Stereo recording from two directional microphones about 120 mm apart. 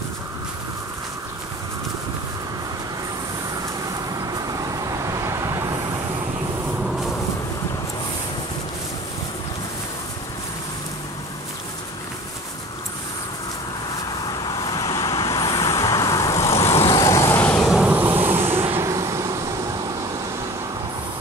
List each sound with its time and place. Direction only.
4.3 s vehicle: 30° right (ahead or behind)
14.4 s vehicle: 35° left (ahead or behind)
17.7 s vehicle: 10° right (ahead or behind)